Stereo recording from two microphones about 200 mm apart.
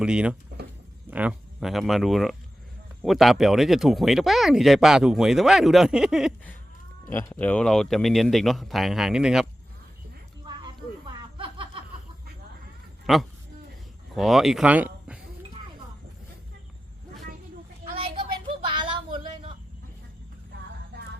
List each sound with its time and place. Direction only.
0.0 s speech: 5° right (ahead or behind)
7.1 s speech: 10° left (ahead or behind)
11.1 s a sound: 25° right (ahead or behind)
13.1 s speech: centre (ahead or behind)
17.9 s a sound: 30° right (ahead or behind)
20.9 s music: 55° right (ahead or behind)